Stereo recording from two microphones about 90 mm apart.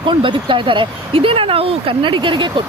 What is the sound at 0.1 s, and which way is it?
Speech, 60° right (ahead or behind).